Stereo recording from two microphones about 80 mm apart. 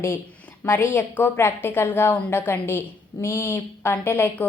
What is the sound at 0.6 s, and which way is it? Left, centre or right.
A woman's voice, left.